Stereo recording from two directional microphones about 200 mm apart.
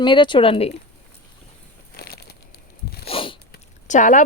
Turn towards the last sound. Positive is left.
turn(degrees=40)  # may be behind; listen again after turning